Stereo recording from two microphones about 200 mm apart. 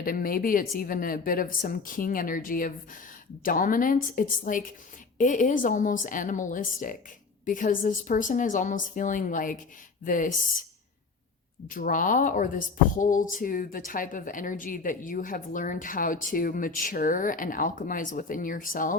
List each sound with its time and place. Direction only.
0.0 s a woman's voice: 45° left (ahead or behind)
11.7 s speech: 45° left (ahead or behind)